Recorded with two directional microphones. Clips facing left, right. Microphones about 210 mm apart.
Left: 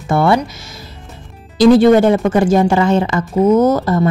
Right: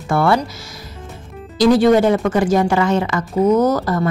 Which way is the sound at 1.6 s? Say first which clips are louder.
Left 4 dB; 25° left (ahead or behind).